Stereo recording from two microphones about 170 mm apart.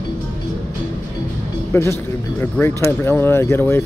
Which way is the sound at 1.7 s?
15° left (ahead or behind).